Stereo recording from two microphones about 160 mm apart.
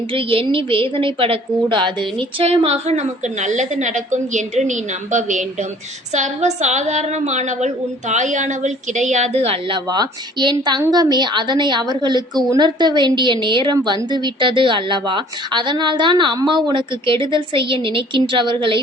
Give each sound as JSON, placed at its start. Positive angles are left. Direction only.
{"t": 0.1, "sound": "a woman's voice", "side_deg": -35}